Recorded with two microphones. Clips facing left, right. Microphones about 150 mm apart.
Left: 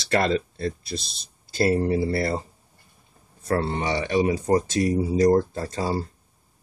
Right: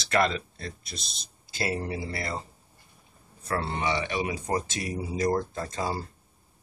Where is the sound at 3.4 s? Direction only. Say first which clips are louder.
Left 5 dB; 40° left (ahead or behind).